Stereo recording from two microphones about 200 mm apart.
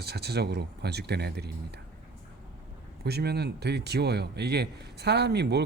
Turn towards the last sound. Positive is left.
turn(degrees=-55)  # may be behind; listen again after turning